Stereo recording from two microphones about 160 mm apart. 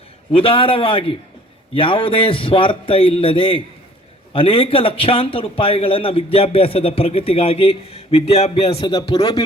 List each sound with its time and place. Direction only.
0.3 s a man's voice: 35° left (ahead or behind)